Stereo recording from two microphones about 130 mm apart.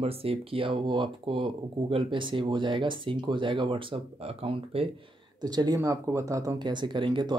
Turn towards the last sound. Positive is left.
turn(degrees=-35)  # may be behind; listen again after turning